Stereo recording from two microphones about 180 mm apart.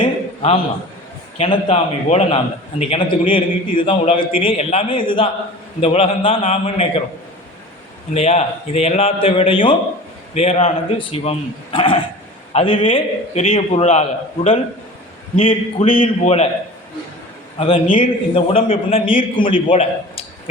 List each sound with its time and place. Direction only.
0.0 s a sound: 30° left (ahead or behind)
1.4 s a man's voice: 35° left (ahead or behind)
8.1 s a man's voice: 35° left (ahead or behind)
15.4 s a man's voice: 30° left (ahead or behind)
17.9 s a man's voice: 30° left (ahead or behind)